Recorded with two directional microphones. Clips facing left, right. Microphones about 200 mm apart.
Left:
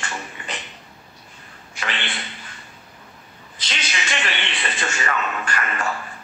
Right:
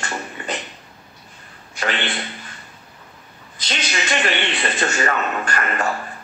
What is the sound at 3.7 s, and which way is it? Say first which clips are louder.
Speech: right 5 dB; 40° right (ahead or behind).